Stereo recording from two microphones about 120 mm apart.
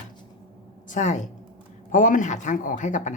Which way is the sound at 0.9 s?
90° left.